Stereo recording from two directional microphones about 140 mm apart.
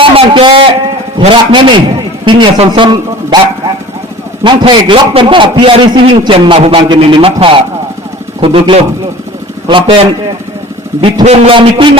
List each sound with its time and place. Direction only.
0.0 s a man's voice: 40° right (ahead or behind)
4.4 s a man's voice: 35° right (ahead or behind)
11.3 s a man's voice: 40° right (ahead or behind)